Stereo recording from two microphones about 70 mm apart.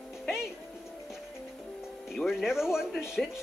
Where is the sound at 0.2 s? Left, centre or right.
Centre.